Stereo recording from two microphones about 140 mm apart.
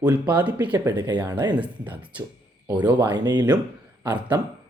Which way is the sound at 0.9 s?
30° right (ahead or behind).